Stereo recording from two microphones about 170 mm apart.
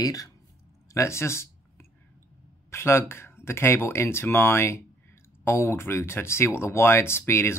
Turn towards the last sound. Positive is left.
turn(degrees=15)  # may be behind; listen again after turning